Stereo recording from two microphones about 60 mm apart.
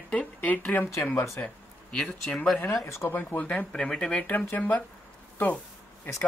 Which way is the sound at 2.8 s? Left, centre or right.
Left.